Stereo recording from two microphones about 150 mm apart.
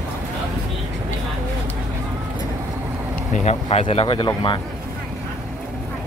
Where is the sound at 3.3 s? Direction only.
45° left (ahead or behind).